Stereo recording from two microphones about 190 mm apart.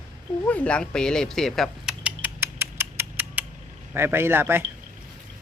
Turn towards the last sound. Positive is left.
turn(degrees=-10)  # may be behind; listen again after turning